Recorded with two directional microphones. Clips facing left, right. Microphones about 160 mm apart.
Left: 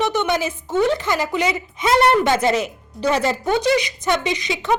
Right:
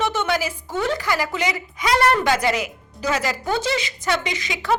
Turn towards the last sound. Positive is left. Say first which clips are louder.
# left 2 dB
turn(degrees=20)  # may be behind; listen again after turning